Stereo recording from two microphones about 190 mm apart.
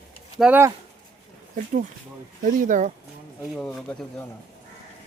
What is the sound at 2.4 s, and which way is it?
Speech, 45° right (ahead or behind).